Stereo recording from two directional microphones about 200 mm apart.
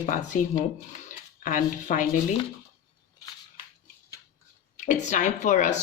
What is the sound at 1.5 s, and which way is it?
Speech, 40° left (ahead or behind).